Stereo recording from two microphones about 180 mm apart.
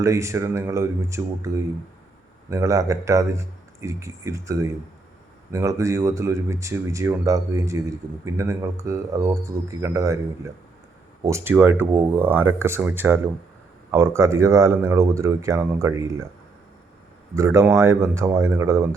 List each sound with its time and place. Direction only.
0.0 s speech: 15° right (ahead or behind)
17.3 s speech: 15° right (ahead or behind)